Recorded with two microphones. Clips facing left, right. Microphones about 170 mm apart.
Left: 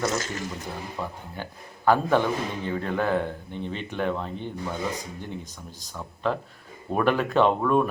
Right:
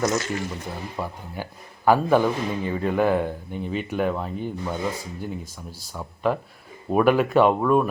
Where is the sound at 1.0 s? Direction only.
10° right (ahead or behind).